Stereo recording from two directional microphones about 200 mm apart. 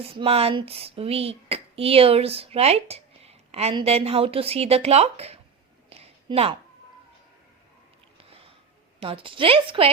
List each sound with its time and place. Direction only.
0.0 s speech: 30° right (ahead or behind)
5.9 s a sound: 30° right (ahead or behind)
8.2 s sniff: 30° right (ahead or behind)
9.0 s speech: 25° right (ahead or behind)